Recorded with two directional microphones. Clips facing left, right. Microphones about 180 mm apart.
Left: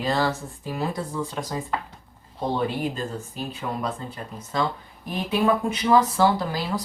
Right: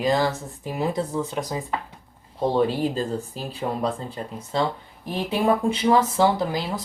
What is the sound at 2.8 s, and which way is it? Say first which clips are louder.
Speech: right 4 dB; 35° right (ahead or behind).